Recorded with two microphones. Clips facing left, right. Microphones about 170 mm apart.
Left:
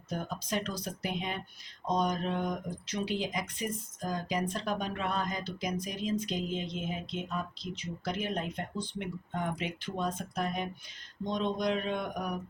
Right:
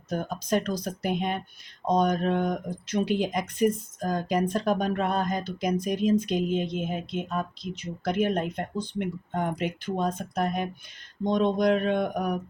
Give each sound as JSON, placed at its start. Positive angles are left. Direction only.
{"t": 0.1, "sound": "speech", "side_deg": -50}